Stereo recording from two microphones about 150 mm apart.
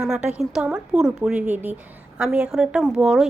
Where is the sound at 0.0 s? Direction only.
5° right (ahead or behind).